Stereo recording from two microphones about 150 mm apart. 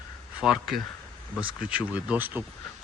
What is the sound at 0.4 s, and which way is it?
Speech, centre (ahead or behind).